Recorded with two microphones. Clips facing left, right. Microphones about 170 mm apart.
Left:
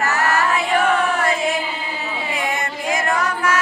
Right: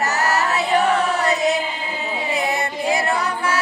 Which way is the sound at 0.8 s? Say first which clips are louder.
Even; 35° right (ahead or behind).